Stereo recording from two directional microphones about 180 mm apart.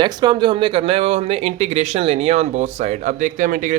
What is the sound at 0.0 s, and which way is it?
Speech, 25° right (ahead or behind).